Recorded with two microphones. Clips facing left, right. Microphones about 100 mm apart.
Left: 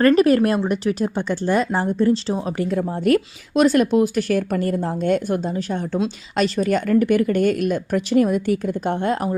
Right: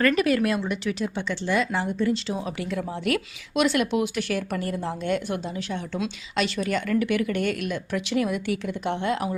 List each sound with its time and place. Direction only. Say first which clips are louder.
0.0 s speech: left 7 dB; 40° left (ahead or behind)